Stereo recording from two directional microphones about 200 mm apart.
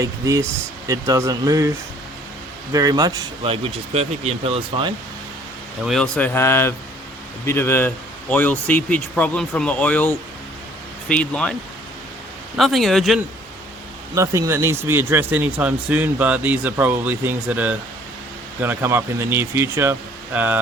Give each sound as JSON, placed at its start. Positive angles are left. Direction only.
{"t": 0.0, "sound": "a man's voice", "side_deg": -15}
{"t": 2.7, "sound": "speech", "side_deg": -20}
{"t": 5.8, "sound": "speech", "side_deg": 0}
{"t": 12.5, "sound": "speech", "side_deg": 0}
{"t": 14.2, "sound": "a man's voice", "side_deg": -15}